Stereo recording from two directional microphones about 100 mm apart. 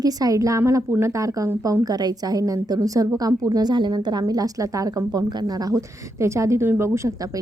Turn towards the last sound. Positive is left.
turn(degrees=-30)  # may be behind; listen again after turning